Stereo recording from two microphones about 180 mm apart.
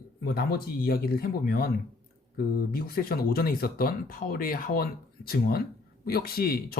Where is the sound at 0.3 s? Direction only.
60° left (ahead or behind).